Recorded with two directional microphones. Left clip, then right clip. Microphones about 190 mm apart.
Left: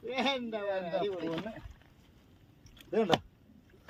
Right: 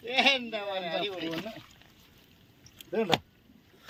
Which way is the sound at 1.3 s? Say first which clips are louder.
Right 1 dB; centre (ahead or behind).